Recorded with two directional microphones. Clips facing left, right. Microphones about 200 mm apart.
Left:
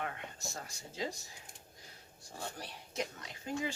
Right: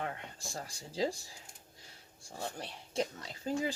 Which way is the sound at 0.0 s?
30° right (ahead or behind).